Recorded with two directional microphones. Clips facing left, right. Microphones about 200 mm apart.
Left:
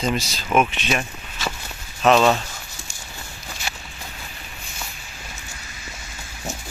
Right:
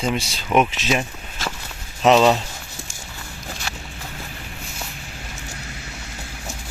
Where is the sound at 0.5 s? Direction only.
20° right (ahead or behind).